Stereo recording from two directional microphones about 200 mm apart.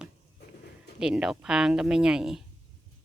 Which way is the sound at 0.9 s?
5° right (ahead or behind).